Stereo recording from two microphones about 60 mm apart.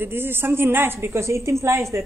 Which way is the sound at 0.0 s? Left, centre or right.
Right.